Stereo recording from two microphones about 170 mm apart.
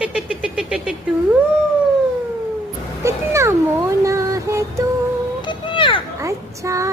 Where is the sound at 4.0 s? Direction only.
20° right (ahead or behind).